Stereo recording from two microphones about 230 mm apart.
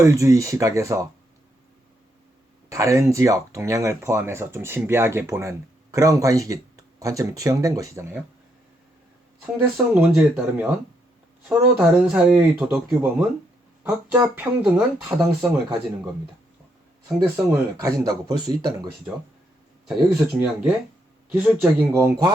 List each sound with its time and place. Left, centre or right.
0.0 s speech: centre
2.6 s speech: centre
9.7 s speech: centre
17.3 s speech: centre
20.2 s speech: centre